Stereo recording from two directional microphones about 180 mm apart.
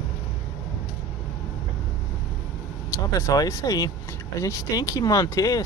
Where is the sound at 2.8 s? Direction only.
20° left (ahead or behind).